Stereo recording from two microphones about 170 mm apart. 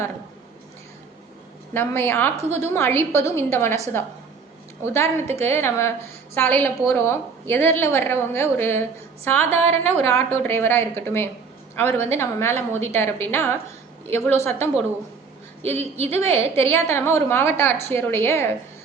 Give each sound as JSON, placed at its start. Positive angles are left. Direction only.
{"t": 1.7, "sound": "a woman's voice", "side_deg": 15}
{"t": 2.4, "sound": "a sound", "side_deg": -40}
{"t": 2.7, "sound": "a woman's voice", "side_deg": 15}
{"t": 4.8, "sound": "a woman's voice", "side_deg": 15}
{"t": 15.6, "sound": "a sound", "side_deg": -40}
{"t": 16.3, "sound": "a woman's voice", "side_deg": 15}